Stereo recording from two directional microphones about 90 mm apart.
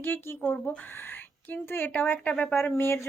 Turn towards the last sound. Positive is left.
turn(degrees=30)  # may be behind; listen again after turning